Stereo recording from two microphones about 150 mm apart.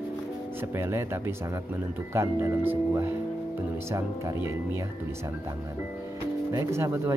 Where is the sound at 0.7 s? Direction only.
15° right (ahead or behind).